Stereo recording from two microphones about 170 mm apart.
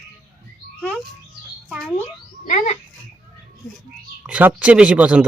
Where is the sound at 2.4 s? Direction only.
50° left (ahead or behind).